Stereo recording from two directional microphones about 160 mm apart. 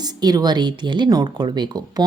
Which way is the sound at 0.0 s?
25° right (ahead or behind).